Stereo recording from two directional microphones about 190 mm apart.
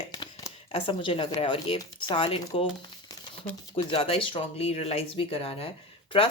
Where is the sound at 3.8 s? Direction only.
25° left (ahead or behind).